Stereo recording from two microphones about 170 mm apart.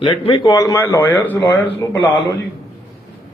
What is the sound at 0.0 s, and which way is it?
A man's voice, 30° left (ahead or behind).